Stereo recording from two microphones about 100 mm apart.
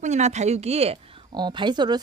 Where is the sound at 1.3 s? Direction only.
50° right (ahead or behind).